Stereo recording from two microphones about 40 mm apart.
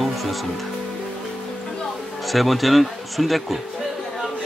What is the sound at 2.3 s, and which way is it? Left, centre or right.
Speech, centre.